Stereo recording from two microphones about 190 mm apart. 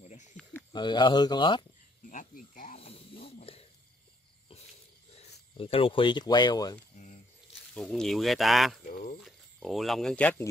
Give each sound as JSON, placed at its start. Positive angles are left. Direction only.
{"t": 0.4, "sound": "a sound", "side_deg": 5}
{"t": 0.7, "sound": "speech", "side_deg": 25}
{"t": 2.0, "sound": "insect", "side_deg": 45}
{"t": 5.6, "sound": "speech", "side_deg": 30}
{"t": 7.7, "sound": "speech", "side_deg": 0}
{"t": 8.8, "sound": "a sound", "side_deg": 45}
{"t": 9.2, "sound": "speech", "side_deg": 0}